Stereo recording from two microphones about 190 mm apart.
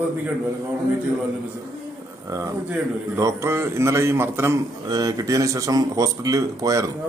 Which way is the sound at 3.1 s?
15° right (ahead or behind).